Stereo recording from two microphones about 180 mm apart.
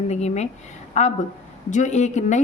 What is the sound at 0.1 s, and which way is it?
A woman's voice, 40° left (ahead or behind).